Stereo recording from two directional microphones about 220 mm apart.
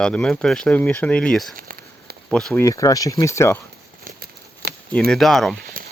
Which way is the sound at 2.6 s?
15° left (ahead or behind).